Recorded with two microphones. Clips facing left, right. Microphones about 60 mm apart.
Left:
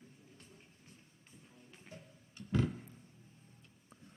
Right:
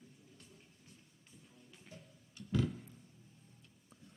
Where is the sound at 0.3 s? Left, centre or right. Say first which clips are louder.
Left 1 dB; left.